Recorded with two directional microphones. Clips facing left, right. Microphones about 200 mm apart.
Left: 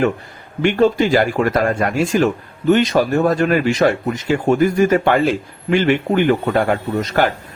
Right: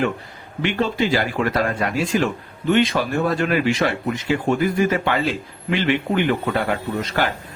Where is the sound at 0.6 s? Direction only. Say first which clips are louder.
Left 7 dB; 50° left (ahead or behind).